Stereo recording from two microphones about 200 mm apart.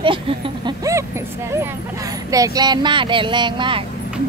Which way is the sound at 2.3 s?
20° right (ahead or behind).